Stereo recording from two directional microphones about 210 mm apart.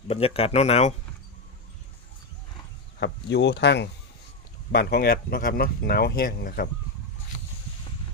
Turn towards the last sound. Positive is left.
turn(degrees=45)  # may be behind; listen again after turning